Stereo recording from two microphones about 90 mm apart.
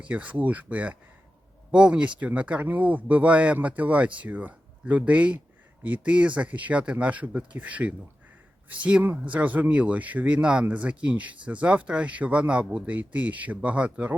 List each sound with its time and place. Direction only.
0.0 s speech: 15° right (ahead or behind)